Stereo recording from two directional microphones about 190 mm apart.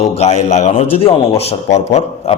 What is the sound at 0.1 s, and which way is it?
A man's voice, 35° left (ahead or behind).